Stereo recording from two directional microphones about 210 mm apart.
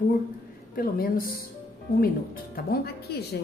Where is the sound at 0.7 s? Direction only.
45° left (ahead or behind).